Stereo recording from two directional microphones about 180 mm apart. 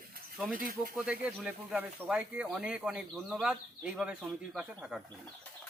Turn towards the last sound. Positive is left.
turn(degrees=0)  # may be behind; listen again after turning